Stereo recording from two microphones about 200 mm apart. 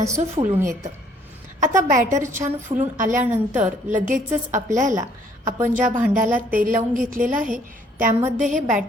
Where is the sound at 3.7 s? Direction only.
40° right (ahead or behind).